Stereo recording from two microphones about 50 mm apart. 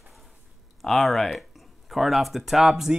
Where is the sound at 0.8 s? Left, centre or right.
Centre.